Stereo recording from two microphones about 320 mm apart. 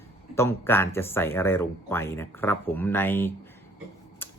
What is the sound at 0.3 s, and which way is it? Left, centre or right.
Speech, centre.